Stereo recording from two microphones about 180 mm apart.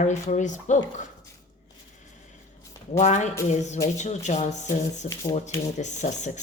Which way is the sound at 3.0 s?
40° left (ahead or behind).